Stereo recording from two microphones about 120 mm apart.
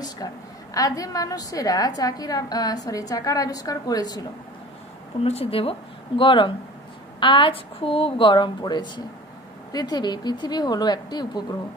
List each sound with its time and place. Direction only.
0.2 s a sound: 30° left (ahead or behind)
0.7 s a woman's voice: 30° left (ahead or behind)
5.2 s a woman's voice: 55° left (ahead or behind); by 11.4 s 35° left (ahead or behind)